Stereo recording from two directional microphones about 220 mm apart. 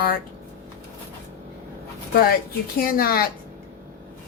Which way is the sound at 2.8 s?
40° left (ahead or behind).